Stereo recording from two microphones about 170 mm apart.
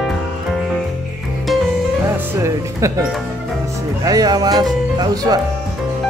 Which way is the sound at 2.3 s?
20° right (ahead or behind).